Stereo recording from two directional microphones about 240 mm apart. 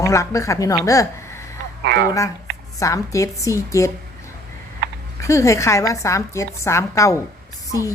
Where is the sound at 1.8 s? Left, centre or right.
Right.